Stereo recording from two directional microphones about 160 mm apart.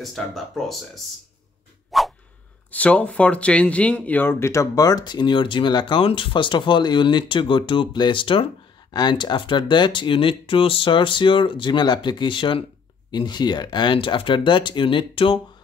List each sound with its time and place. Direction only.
0.0 s speech: centre (ahead or behind)
1.9 s a sound: centre (ahead or behind)
2.7 s speech: 10° left (ahead or behind); by 15.4 s 35° left (ahead or behind)